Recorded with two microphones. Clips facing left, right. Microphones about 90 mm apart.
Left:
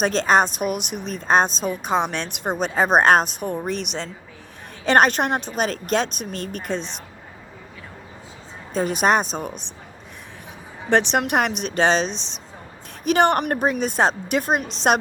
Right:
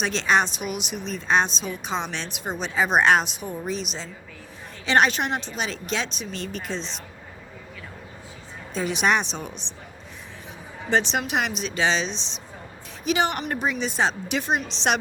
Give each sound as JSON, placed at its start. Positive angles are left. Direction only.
{"t": 0.0, "sound": "a woman's voice", "side_deg": 45}
{"t": 4.9, "sound": "a woman's voice", "side_deg": 50}
{"t": 8.7, "sound": "a woman's voice", "side_deg": 45}
{"t": 10.8, "sound": "a woman's voice", "side_deg": 60}